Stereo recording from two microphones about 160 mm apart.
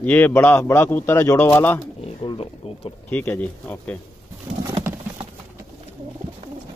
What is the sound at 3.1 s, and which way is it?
Speech, 10° left (ahead or behind).